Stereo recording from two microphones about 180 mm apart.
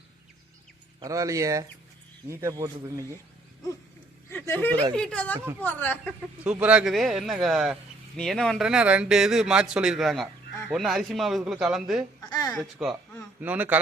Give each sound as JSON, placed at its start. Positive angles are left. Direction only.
{"t": 0.9, "sound": "a man's voice", "side_deg": -20}
{"t": 4.3, "sound": "speech", "side_deg": 10}
{"t": 6.4, "sound": "speech", "side_deg": -5}
{"t": 12.3, "sound": "speech", "side_deg": 20}
{"t": 12.5, "sound": "a man's voice", "side_deg": 0}